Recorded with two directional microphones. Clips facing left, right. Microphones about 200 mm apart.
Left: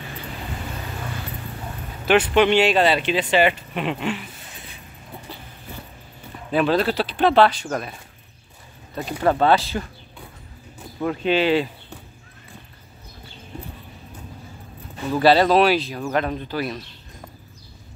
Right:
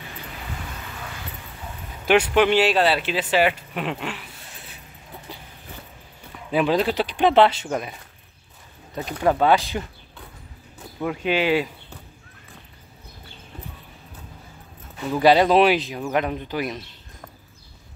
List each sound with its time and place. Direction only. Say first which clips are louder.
2.0 s speech: left 1 dB; 10° right (ahead or behind)
6.5 s speech: left 1 dB; 15° right (ahead or behind)
9.2 s speech: left 1 dB; 10° right (ahead or behind)
11.1 s speech: left 2 dB; 10° right (ahead or behind)
15.1 s speech: even; 15° right (ahead or behind)